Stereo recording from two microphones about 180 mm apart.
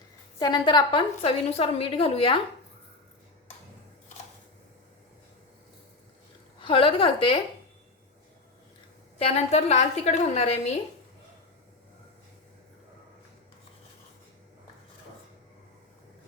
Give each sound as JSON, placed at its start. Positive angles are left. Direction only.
{"t": 0.3, "sound": "a woman's voice", "side_deg": 20}
{"t": 6.6, "sound": "a woman's voice", "side_deg": 30}
{"t": 9.1, "sound": "a woman's voice", "side_deg": 35}